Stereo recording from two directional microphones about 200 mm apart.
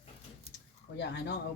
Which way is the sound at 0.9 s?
60° left (ahead or behind).